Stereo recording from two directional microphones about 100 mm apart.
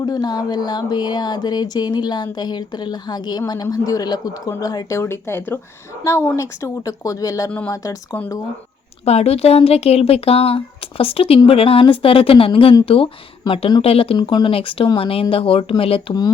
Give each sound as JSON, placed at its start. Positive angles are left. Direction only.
{"t": 0.0, "sound": "speech", "side_deg": 45}
{"t": 4.9, "sound": "a woman's voice", "side_deg": 25}
{"t": 9.0, "sound": "speech", "side_deg": 90}
{"t": 14.2, "sound": "speech", "side_deg": 50}